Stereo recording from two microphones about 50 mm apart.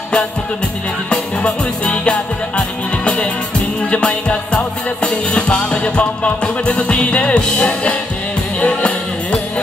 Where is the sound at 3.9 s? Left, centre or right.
Left.